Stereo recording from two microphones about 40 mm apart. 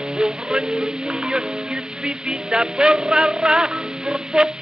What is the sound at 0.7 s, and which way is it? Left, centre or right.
Speech, centre.